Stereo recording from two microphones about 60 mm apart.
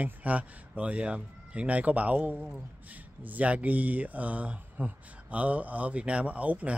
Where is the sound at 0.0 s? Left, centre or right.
Right.